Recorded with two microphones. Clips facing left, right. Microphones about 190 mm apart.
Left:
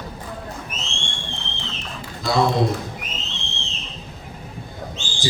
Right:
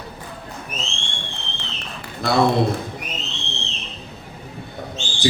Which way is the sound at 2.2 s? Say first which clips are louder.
Right 2 dB; 60° right (ahead or behind).